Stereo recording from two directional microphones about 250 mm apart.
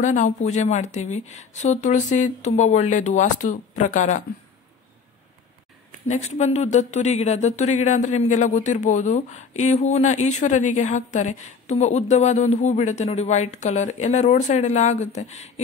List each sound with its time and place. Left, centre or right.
0.0 s speech: left
6.0 s speech: left